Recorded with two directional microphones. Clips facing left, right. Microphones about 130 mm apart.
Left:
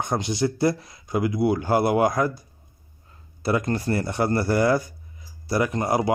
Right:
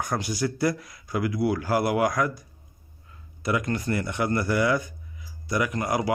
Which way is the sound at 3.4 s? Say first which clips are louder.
Left 3 dB; 35° left (ahead or behind).